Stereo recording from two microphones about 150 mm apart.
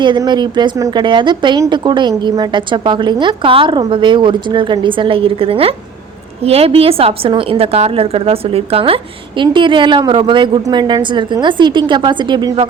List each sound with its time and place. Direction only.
0.0 s a woman's voice: 30° right (ahead or behind)